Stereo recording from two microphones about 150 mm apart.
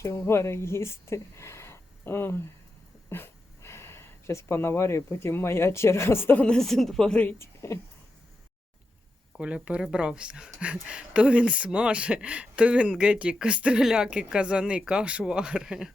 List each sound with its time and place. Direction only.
0.0 s speech: 20° left (ahead or behind)
9.4 s speech: 5° right (ahead or behind)